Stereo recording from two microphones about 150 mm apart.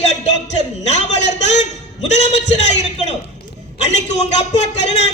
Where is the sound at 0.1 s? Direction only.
50° left (ahead or behind).